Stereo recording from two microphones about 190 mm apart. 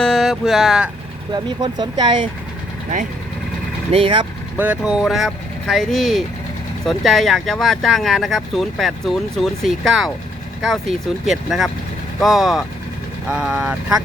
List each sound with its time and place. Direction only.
0.0 s speech: centre (ahead or behind)
1.3 s speech: 20° right (ahead or behind)
3.9 s speech: 30° right (ahead or behind)
4.5 s speech: 10° right (ahead or behind)